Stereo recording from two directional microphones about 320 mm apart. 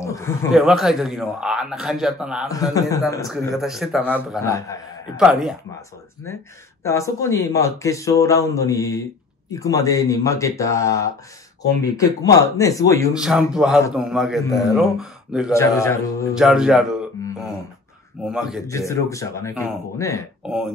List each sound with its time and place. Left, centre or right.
0.0 s a sound: centre
0.6 s a man's voice: centre
2.4 s speech: centre
3.3 s a man's voice: centre
4.5 s speech: centre
5.2 s a man's voice: centre
6.8 s speech: centre
13.1 s a man's voice: centre
16.3 s a man's voice: centre
18.7 s speech: centre
20.4 s a man's voice: centre